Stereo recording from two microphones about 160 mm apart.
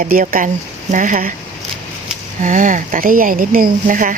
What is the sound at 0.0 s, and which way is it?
Speech, 65° right (ahead or behind).